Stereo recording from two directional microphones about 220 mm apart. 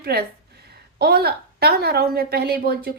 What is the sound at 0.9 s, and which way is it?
Speech, 45° right (ahead or behind).